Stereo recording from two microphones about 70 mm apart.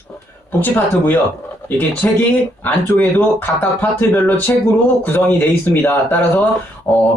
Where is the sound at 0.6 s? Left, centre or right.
Left.